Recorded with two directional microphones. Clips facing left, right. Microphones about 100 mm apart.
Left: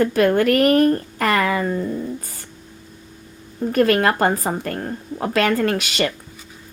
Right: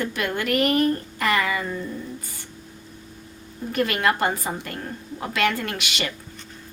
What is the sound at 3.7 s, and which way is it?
Speech, 40° left (ahead or behind).